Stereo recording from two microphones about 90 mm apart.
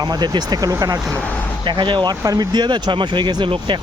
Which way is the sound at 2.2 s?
45° right (ahead or behind).